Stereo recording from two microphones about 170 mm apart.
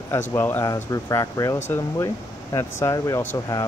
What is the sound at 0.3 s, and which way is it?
Speech, 15° left (ahead or behind).